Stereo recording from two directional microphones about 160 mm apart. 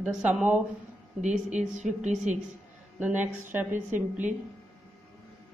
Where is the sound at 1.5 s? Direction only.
50° right (ahead or behind).